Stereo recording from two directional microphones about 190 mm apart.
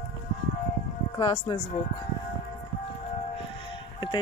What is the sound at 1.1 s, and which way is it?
Speech, 25° left (ahead or behind).